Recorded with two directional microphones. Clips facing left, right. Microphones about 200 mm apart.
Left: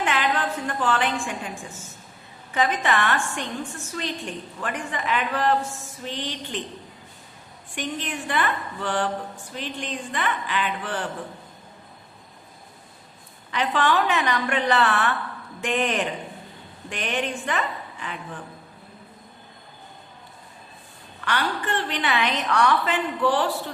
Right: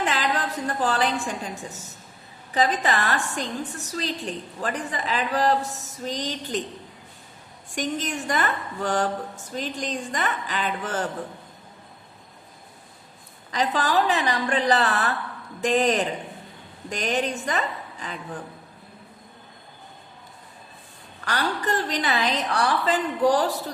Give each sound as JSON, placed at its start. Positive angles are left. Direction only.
{"t": 0.0, "sound": "a woman's voice", "side_deg": -35}
{"t": 7.7, "sound": "a woman's voice", "side_deg": -40}
{"t": 13.5, "sound": "a woman's voice", "side_deg": -35}
{"t": 21.2, "sound": "a woman's voice", "side_deg": -40}